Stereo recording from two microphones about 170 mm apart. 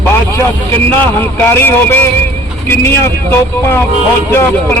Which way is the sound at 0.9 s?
10° left (ahead or behind).